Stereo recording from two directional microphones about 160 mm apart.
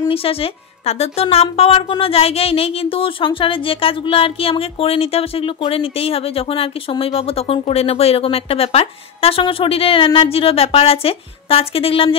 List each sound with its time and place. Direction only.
0.1 s a woman's voice: 35° left (ahead or behind)